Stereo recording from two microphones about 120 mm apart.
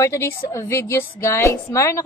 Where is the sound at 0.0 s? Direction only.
25° left (ahead or behind).